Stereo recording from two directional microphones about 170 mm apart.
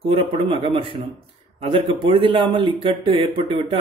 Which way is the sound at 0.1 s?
35° right (ahead or behind).